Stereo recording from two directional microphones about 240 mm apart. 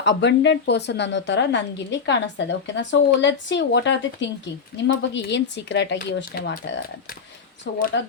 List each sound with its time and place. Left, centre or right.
0.0 s a woman's voice: left